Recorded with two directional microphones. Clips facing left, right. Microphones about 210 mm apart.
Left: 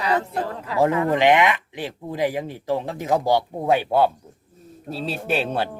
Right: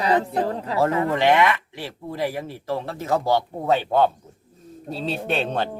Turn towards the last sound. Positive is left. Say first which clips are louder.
# left 1 dB
turn(degrees=5)  # may be behind; listen again after turning